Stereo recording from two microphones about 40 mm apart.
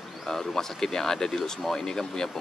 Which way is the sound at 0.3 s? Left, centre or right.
Centre.